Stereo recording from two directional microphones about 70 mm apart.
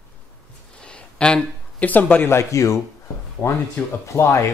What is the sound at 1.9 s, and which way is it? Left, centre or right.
Speech, left.